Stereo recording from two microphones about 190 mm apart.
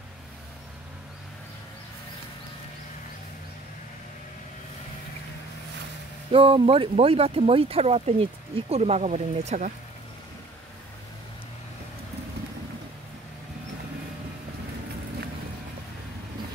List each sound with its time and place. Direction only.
6.3 s speech: 30° right (ahead or behind)